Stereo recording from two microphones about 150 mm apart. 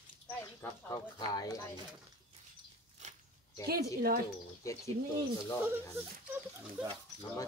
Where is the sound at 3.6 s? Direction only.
90° right.